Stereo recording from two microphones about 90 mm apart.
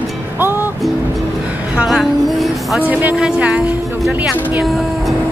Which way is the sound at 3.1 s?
10° right (ahead or behind).